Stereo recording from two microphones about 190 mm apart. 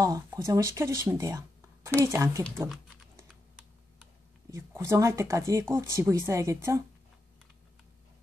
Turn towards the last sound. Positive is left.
turn(degrees=-15)  # may be behind; listen again after turning